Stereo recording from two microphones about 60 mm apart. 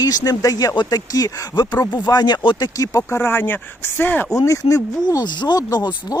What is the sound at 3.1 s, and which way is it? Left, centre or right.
Speech, left.